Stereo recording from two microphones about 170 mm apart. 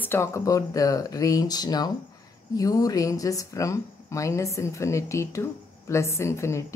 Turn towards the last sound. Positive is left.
turn(degrees=15)  # may be behind; listen again after turning